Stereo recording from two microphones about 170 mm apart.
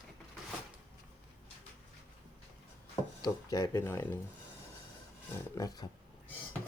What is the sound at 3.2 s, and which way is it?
Speech, 20° left (ahead or behind).